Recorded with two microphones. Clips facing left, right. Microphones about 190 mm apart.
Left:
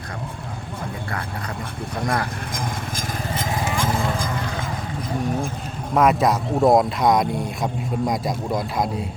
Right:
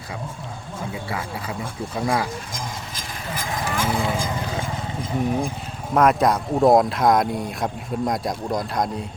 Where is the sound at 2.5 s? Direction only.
50° left (ahead or behind).